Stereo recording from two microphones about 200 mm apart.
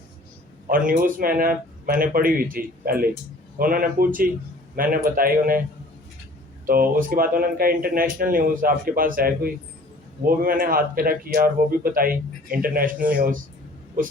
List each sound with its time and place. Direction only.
0.7 s speech: 45° right (ahead or behind)
6.7 s speech: 45° right (ahead or behind)